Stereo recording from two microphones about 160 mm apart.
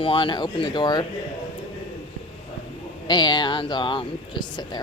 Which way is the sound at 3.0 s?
25° left (ahead or behind).